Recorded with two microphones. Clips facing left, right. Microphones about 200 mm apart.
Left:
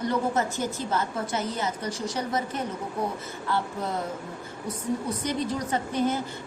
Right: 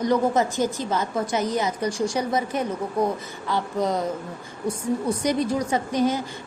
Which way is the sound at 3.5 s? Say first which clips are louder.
Right 5 dB; 90° right.